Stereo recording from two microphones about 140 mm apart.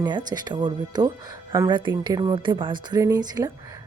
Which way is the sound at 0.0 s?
30° right (ahead or behind).